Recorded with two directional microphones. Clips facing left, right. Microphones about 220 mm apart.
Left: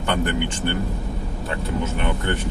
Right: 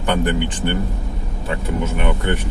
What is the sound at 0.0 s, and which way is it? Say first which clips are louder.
Speech: right 3 dB; 15° right (ahead or behind).